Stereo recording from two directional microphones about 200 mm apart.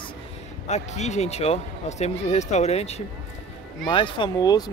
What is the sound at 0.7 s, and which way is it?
Speech, 35° left (ahead or behind).